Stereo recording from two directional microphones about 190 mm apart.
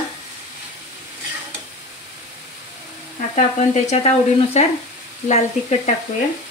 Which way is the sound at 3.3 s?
35° left (ahead or behind).